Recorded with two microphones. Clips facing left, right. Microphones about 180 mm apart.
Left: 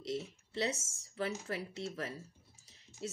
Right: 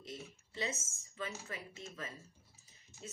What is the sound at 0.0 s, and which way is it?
A woman's voice, 75° left (ahead or behind).